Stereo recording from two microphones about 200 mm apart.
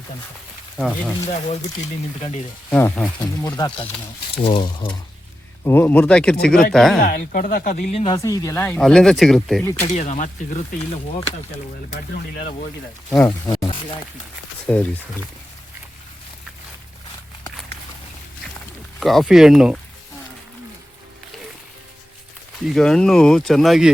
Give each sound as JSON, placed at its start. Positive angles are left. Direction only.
{"t": 0.8, "sound": "speech", "side_deg": 0}
{"t": 2.6, "sound": "speech", "side_deg": 10}
{"t": 3.4, "sound": "speech", "side_deg": 20}
{"t": 5.6, "sound": "speech", "side_deg": 10}
{"t": 7.0, "sound": "speech", "side_deg": 45}
{"t": 8.0, "sound": "speech", "side_deg": 15}
{"t": 9.6, "sound": "speech", "side_deg": 15}
{"t": 9.9, "sound": "speech", "side_deg": 35}
{"t": 13.2, "sound": "speech", "side_deg": 20}
{"t": 14.7, "sound": "speech", "side_deg": 5}
{"t": 18.9, "sound": "speech", "side_deg": 0}
{"t": 22.6, "sound": "speech", "side_deg": 0}